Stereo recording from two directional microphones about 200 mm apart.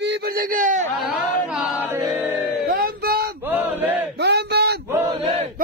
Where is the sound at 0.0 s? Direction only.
55° right (ahead or behind); by 0.8 s 40° right (ahead or behind).